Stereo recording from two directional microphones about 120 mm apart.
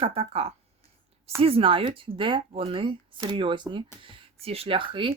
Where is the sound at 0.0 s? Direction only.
55° right (ahead or behind).